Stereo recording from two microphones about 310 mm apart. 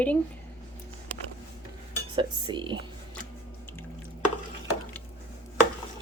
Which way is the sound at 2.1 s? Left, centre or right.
Centre.